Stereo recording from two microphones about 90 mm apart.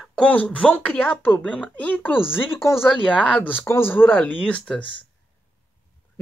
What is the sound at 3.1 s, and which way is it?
Speech, 15° left (ahead or behind).